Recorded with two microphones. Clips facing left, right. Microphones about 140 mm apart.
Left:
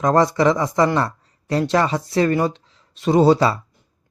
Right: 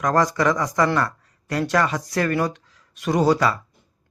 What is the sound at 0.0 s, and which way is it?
Speech, 25° left (ahead or behind).